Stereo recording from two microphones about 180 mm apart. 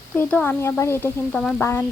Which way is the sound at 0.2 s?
10° left (ahead or behind).